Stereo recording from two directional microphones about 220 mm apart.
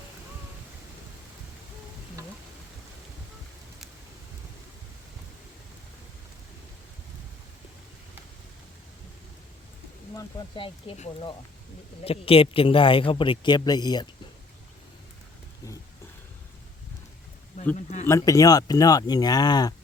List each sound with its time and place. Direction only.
10.2 s a man's voice: 20° left (ahead or behind)
17.6 s a sound: 35° left (ahead or behind)
18.0 s speech: 15° left (ahead or behind)